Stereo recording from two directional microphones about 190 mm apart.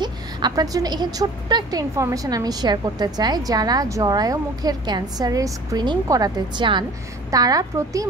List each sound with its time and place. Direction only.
0.0 s a woman's voice: 20° right (ahead or behind)